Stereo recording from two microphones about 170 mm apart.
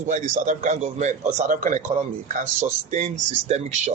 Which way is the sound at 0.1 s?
50° right (ahead or behind).